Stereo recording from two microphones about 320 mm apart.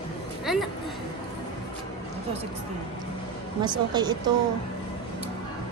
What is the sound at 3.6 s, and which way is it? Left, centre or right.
Speech, centre.